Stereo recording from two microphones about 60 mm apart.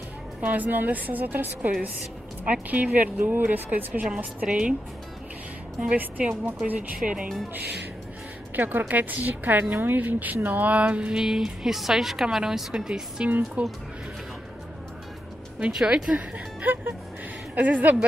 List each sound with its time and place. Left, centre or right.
0.4 s a woman's voice: right
4.5 s a woman's voice: centre
5.8 s a woman's voice: right
8.5 s a woman's voice: right
11.1 s a woman's voice: centre
15.7 s a woman's voice: centre
16.6 s a woman's voice: right